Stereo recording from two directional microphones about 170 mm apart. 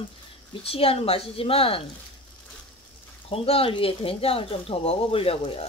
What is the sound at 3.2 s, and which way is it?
Speech, 35° left (ahead or behind).